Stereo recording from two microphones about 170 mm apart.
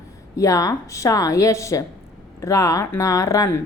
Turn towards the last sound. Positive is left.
turn(degrees=15)  # may be behind; listen again after turning